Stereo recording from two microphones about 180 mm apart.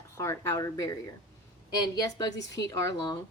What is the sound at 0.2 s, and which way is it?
Speech, 15° left (ahead or behind).